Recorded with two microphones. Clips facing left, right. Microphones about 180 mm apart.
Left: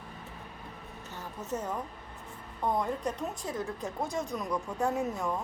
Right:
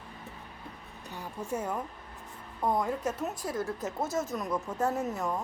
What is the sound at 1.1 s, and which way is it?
A woman's voice, 10° right (ahead or behind).